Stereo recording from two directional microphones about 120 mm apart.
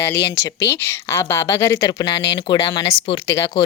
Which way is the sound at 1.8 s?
40° left (ahead or behind).